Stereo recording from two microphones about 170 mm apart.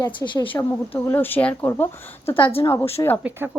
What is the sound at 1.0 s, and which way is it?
Speech, 10° left (ahead or behind).